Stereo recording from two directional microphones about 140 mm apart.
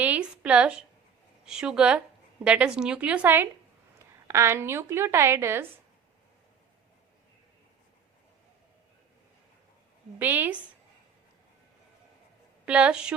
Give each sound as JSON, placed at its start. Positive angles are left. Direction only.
{"t": 0.0, "sound": "a sound", "side_deg": -10}
{"t": 1.5, "sound": "a woman's voice", "side_deg": -5}
{"t": 10.2, "sound": "a woman's voice", "side_deg": -15}
{"t": 12.6, "sound": "a woman's voice", "side_deg": -10}